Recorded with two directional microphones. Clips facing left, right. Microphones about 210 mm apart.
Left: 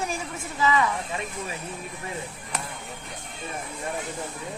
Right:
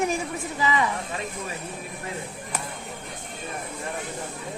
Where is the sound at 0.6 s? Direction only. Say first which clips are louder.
Left 2 dB; 20° right (ahead or behind).